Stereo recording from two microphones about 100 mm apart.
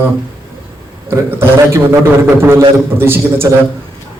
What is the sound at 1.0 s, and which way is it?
A man's voice, 25° right (ahead or behind).